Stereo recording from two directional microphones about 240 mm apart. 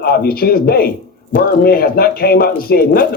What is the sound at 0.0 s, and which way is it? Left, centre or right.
Speech, left.